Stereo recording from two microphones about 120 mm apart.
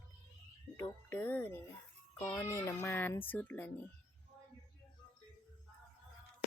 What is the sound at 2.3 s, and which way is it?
A child's voice, 25° left (ahead or behind).